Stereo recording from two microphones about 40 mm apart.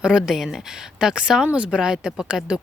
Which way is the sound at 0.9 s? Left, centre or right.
Right.